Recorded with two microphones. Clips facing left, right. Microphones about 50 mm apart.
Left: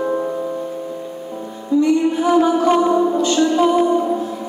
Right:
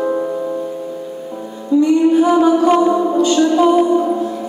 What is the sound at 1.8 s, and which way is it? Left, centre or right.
Music, right.